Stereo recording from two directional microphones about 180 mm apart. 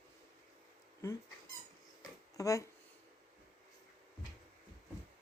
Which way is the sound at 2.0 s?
20° left (ahead or behind).